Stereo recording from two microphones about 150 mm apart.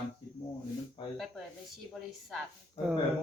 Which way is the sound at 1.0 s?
35° left (ahead or behind).